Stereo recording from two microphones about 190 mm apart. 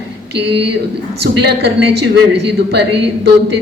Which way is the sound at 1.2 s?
60° right (ahead or behind).